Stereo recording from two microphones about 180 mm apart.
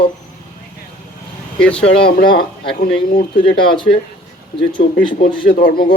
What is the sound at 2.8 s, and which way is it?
Speech, 50° left (ahead or behind).